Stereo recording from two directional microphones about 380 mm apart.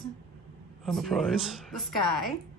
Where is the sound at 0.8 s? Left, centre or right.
Centre.